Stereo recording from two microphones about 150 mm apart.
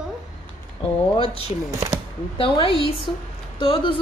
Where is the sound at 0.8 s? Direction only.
30° left (ahead or behind).